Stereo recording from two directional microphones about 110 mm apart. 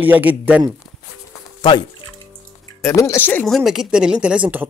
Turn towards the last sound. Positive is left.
turn(degrees=-10)  # may be behind; listen again after turning